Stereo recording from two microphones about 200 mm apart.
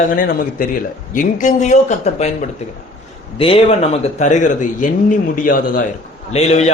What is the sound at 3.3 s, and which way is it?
A man's voice, 25° left (ahead or behind).